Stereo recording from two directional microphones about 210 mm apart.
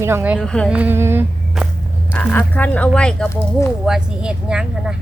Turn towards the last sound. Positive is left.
turn(degrees=-5)  # may be behind; listen again after turning